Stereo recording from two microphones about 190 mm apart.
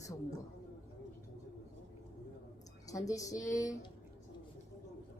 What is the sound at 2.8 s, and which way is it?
A woman's voice, 20° left (ahead or behind).